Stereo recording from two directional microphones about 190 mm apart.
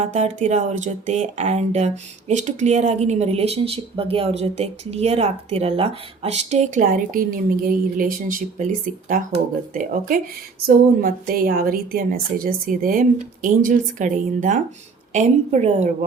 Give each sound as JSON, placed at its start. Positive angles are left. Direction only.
{"t": 0.0, "sound": "a woman's voice", "side_deg": -40}
{"t": 10.7, "sound": "a woman's voice", "side_deg": -50}